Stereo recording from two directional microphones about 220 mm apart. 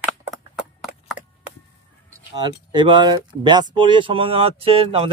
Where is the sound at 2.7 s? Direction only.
20° right (ahead or behind).